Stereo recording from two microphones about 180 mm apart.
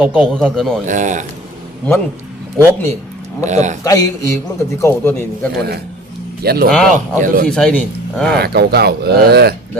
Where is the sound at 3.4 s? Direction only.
40° right (ahead or behind).